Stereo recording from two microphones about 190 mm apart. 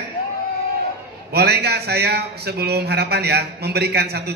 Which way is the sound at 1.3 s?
60° right (ahead or behind).